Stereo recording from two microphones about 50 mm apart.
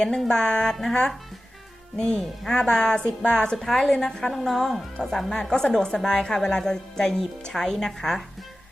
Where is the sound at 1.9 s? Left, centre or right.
Centre.